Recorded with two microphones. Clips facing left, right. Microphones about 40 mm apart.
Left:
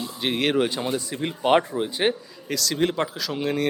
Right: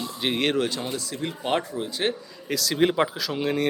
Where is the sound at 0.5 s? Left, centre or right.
Centre.